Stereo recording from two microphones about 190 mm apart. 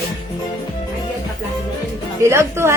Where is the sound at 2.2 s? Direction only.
15° right (ahead or behind).